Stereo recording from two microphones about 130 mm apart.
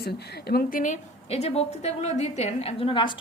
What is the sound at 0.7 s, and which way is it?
A woman's voice, 75° left (ahead or behind).